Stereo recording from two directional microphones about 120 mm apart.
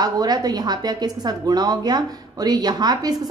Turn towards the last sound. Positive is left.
turn(degrees=-35)  # may be behind; listen again after turning